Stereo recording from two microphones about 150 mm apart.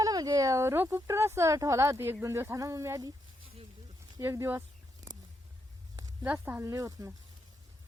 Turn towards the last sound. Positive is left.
turn(degrees=-20)  # may be behind; listen again after turning